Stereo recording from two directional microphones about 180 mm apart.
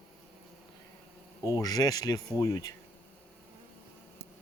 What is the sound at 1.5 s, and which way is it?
Speech, 20° left (ahead or behind).